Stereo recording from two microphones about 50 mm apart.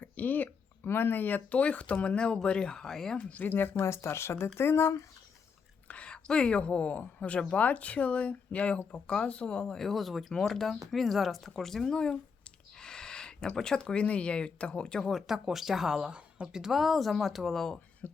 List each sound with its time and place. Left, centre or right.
0.0 s a sound: left
0.9 s speech: left
1.5 s speech: left; by 3.2 s centre
3.2 s speech: left
3.8 s speech: left
5.9 s a woman's voice: left
9.7 s speech: centre
15.0 s speech: centre
16.6 s speech: centre
17.5 s speech: centre
18.0 s a sound: left